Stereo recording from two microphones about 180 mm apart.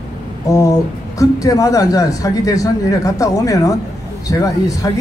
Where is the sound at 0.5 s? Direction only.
15° left (ahead or behind).